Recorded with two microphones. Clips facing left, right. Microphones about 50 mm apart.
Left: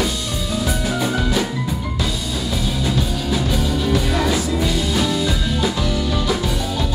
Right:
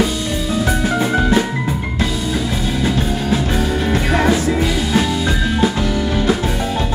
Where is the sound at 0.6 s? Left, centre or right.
Right.